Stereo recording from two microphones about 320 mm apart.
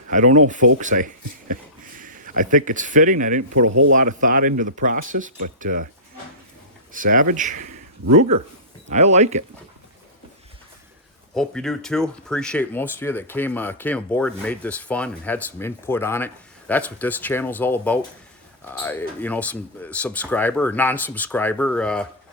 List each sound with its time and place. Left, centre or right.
0.1 s speech: right
6.9 s speech: right
11.3 s speech: centre